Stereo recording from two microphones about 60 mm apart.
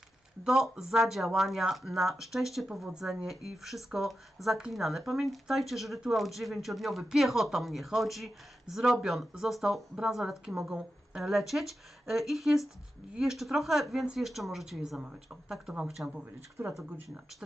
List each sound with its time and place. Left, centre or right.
0.4 s speech: centre
10.7 s a woman's voice: centre
11.2 s speech: centre
15.0 s speech: centre
16.0 s speech: right